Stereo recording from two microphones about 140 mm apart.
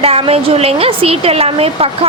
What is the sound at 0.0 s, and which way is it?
Speech, 45° right (ahead or behind).